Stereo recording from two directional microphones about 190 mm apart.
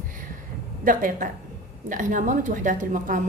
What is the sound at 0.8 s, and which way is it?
A woman's voice, 45° right (ahead or behind).